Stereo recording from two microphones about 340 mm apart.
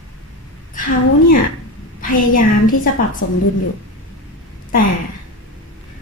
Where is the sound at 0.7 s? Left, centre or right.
Left.